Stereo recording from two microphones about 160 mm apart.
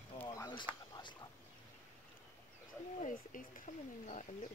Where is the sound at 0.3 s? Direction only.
25° left (ahead or behind).